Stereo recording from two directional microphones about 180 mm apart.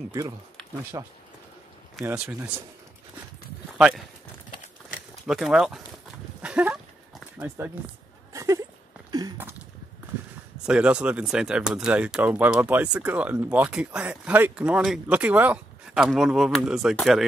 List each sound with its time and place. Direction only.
0.9 s speech: 20° right (ahead or behind)
2.0 s speech: 5° right (ahead or behind)
3.7 s speech: 5° right (ahead or behind)
5.2 s speech: centre (ahead or behind)
6.4 s a sound: 5° right (ahead or behind)
10.6 s speech: 5° right (ahead or behind)